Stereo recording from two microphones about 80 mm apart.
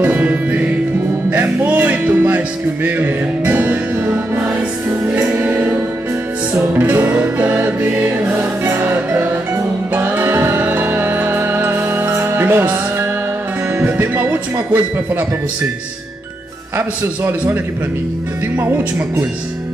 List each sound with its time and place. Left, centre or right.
0.0 s music: right
5.3 s music: right
16.7 s a man's voice: right
18.6 s speech: right